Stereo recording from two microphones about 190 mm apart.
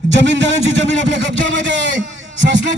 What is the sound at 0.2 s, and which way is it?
A man's voice, 70° right (ahead or behind).